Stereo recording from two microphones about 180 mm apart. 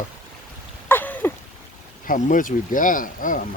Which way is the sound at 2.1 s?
45° left (ahead or behind).